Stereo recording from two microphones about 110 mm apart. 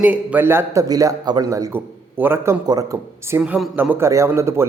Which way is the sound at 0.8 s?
35° right (ahead or behind).